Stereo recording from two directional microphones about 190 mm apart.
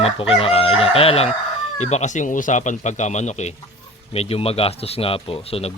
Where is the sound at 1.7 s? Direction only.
35° left (ahead or behind).